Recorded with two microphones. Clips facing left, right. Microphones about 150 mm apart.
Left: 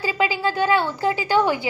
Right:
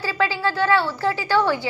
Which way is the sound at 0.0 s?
15° left (ahead or behind).